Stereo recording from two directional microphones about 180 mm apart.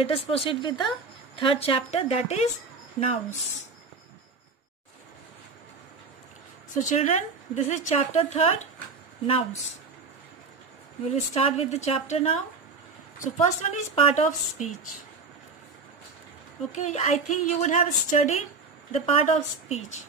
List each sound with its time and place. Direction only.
0.0 s a woman's voice: 35° left (ahead or behind)
6.8 s a woman's voice: 45° left (ahead or behind)
11.3 s a woman's voice: 35° left (ahead or behind)
16.7 s a woman's voice: 40° left (ahead or behind)